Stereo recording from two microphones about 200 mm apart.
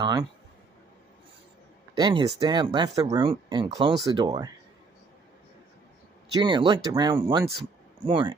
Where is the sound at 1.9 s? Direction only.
20° right (ahead or behind).